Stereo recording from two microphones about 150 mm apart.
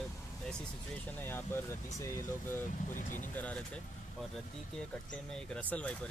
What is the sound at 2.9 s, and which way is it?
Speech, 60° left (ahead or behind).